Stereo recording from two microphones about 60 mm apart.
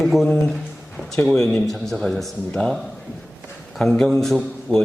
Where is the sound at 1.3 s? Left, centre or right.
Centre.